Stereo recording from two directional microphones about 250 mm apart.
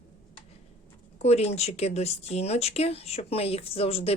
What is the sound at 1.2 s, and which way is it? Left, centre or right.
Speech, left.